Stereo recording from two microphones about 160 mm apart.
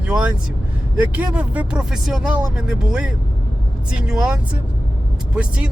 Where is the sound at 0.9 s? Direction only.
10° right (ahead or behind).